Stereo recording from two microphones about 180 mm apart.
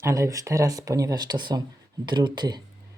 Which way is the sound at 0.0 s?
20° right (ahead or behind).